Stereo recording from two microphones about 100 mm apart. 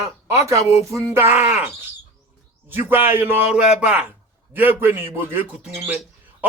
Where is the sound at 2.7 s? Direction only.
20° right (ahead or behind).